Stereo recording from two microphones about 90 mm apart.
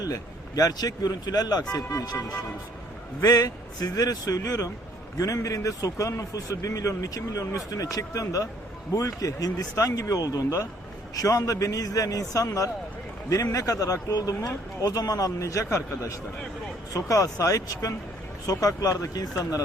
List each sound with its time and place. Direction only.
0.0 s a man's voice: 40° left (ahead or behind)